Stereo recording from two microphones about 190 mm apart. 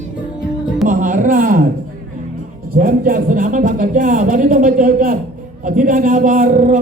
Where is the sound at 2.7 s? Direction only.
45° right (ahead or behind).